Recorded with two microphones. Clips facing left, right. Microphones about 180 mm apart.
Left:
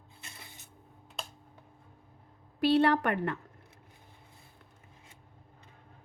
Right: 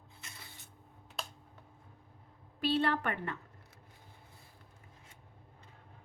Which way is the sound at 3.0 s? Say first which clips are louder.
Left 7 dB; 45° left (ahead or behind).